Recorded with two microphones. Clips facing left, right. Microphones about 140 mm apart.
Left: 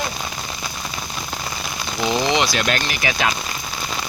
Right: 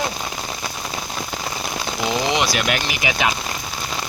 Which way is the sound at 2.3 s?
10° right (ahead or behind).